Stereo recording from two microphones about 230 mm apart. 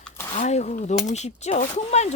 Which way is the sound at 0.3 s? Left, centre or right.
Left.